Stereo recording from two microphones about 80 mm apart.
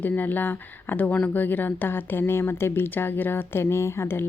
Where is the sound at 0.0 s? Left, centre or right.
Left.